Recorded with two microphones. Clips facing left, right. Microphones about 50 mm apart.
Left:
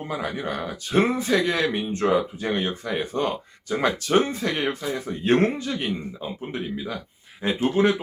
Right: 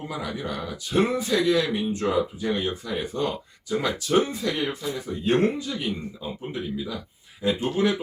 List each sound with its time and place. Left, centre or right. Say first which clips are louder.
0.1 s speech: left 4 dB; left